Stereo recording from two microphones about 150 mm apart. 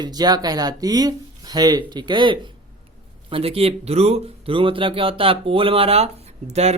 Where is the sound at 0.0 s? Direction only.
25° right (ahead or behind).